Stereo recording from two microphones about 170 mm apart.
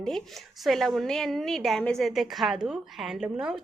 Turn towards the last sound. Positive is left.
turn(degrees=-5)  # may be behind; listen again after turning